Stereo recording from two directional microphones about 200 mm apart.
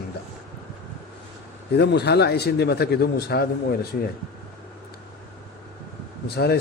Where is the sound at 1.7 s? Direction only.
55° left (ahead or behind).